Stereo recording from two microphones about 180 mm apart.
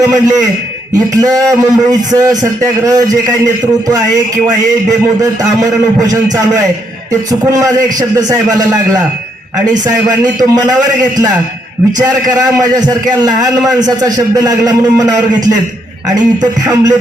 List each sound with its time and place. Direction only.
0.0 s a man's voice: 20° right (ahead or behind)
10.4 s a man's voice: 20° right (ahead or behind)
11.9 s a man's voice: 20° right (ahead or behind)